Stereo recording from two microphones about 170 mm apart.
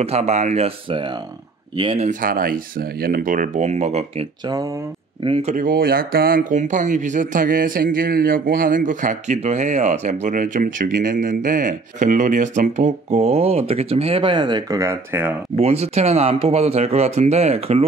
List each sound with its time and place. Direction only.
0.0 s speech: 40° right (ahead or behind)
2.0 s speech: 55° right (ahead or behind); by 15.3 s 15° right (ahead or behind)
15.5 s speech: 40° right (ahead or behind)